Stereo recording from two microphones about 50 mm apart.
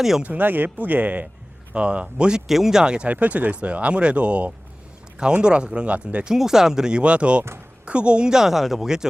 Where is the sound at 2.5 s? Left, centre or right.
Centre.